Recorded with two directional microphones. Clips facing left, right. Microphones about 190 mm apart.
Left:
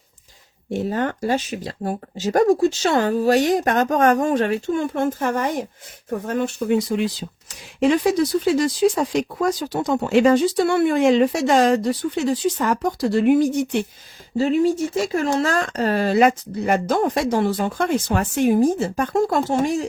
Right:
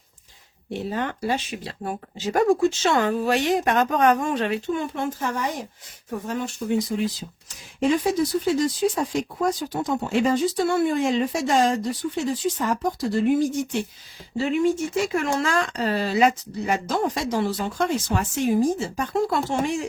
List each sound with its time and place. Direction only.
0.7 s speech: 45° left (ahead or behind); by 13.8 s 70° left (ahead or behind)
14.3 s speech: 35° left (ahead or behind)